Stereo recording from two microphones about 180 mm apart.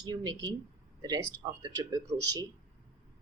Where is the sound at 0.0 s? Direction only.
20° right (ahead or behind).